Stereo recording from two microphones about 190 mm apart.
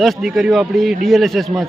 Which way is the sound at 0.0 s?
Centre (ahead or behind).